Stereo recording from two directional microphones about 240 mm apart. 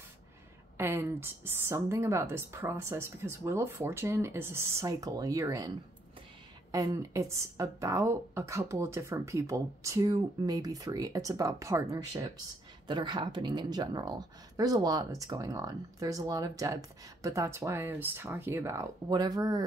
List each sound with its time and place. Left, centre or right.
0.7 s speech: centre
6.7 s speech: centre